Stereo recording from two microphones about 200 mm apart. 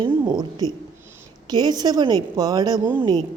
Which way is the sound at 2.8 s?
10° right (ahead or behind).